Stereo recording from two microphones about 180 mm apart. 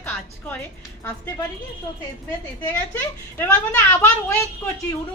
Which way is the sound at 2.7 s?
10° left (ahead or behind).